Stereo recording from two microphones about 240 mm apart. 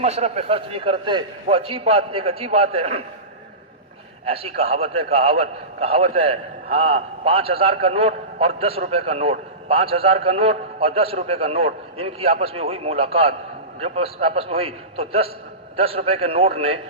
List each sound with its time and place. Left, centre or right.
0.0 s a man's voice: right
4.3 s a man's voice: right